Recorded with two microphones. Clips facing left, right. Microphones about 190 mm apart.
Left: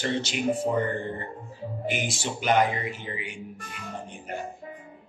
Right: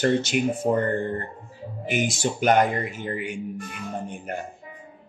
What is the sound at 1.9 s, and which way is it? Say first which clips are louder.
Speech: right 10 dB; 50° right (ahead or behind).